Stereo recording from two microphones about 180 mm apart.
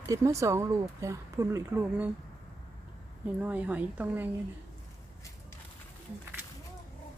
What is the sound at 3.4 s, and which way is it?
Speech, 10° right (ahead or behind).